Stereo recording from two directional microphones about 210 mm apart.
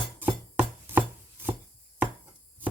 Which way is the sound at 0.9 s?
10° right (ahead or behind).